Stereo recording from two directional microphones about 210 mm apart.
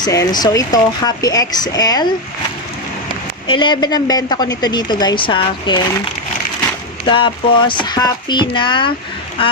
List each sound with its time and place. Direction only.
0.0 s speech: 15° left (ahead or behind)
3.4 s a woman's voice: 25° left (ahead or behind)
7.0 s a woman's voice: 25° left (ahead or behind)